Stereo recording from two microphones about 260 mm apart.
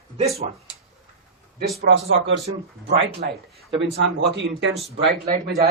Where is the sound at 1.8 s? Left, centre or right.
Right.